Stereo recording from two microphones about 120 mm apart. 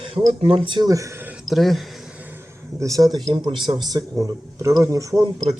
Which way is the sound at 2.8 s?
30° right (ahead or behind).